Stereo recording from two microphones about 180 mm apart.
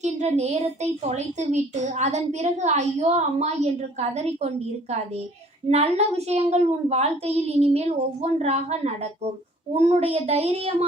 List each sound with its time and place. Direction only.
0.0 s a woman's voice: 40° right (ahead or behind)
5.6 s a woman's voice: 35° right (ahead or behind)